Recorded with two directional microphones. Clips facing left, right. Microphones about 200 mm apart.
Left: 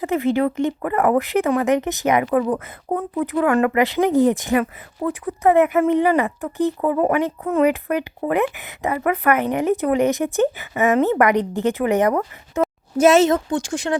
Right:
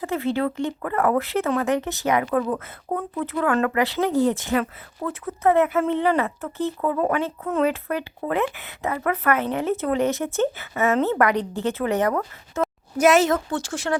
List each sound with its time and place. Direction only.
0.0 s a woman's voice: 15° left (ahead or behind)